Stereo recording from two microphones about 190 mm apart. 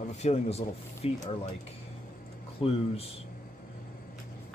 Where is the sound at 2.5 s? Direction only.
30° left (ahead or behind).